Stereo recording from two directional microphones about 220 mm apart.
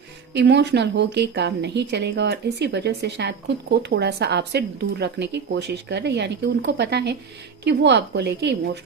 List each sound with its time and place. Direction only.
0.3 s speech: 50° right (ahead or behind)